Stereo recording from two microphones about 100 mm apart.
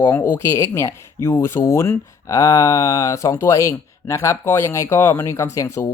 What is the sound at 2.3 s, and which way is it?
Speech, 40° left (ahead or behind).